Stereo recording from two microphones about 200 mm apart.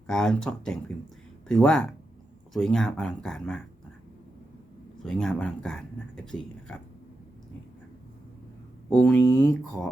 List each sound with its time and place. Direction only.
0.1 s speech: 5° left (ahead or behind)
5.0 s speech: 5° left (ahead or behind)
9.0 s speech: 10° left (ahead or behind)